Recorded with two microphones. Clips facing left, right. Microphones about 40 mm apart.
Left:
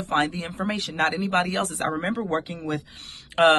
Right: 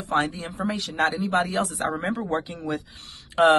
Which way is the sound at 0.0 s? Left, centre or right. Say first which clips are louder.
Left 1 dB; left.